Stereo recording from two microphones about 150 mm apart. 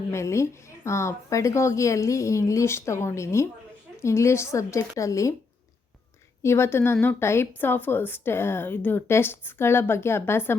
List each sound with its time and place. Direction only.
0.1 s a woman's voice: 20° left (ahead or behind)
6.4 s a woman's voice: 15° left (ahead or behind)